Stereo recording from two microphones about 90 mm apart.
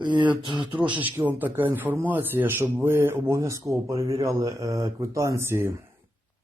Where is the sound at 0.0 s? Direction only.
60° right (ahead or behind).